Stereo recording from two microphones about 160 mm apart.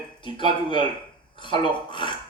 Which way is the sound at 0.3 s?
30° left (ahead or behind).